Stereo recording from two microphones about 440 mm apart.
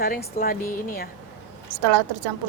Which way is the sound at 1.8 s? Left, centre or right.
Right.